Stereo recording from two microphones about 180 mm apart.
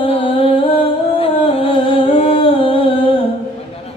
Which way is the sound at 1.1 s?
30° left (ahead or behind).